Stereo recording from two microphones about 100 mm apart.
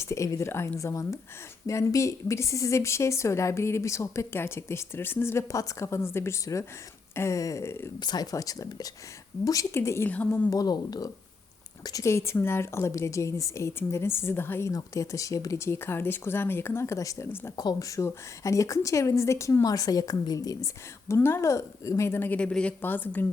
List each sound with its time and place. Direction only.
0.0 s a woman's voice: 30° left (ahead or behind)
7.9 s a woman's voice: 45° left (ahead or behind); by 10.1 s 25° left (ahead or behind)
10.1 s a woman's voice: 15° left (ahead or behind)
10.5 s a woman's voice: 40° left (ahead or behind); by 14.7 s 20° left (ahead or behind)
14.7 s a woman's voice: 35° left (ahead or behind)
17.6 s a woman's voice: 40° left (ahead or behind)
21.2 s a woman's voice: 25° left (ahead or behind)